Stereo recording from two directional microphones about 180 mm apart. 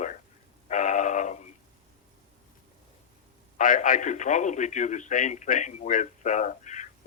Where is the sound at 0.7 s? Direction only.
45° left (ahead or behind).